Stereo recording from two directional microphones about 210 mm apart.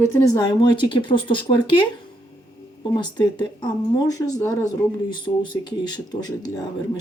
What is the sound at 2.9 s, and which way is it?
Speech, 20° left (ahead or behind).